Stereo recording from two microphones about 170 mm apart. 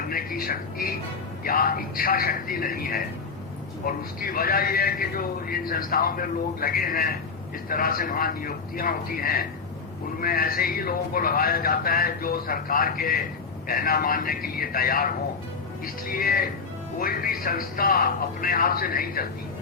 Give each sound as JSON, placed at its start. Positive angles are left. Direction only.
{"t": 0.1, "sound": "a man's voice", "side_deg": 60}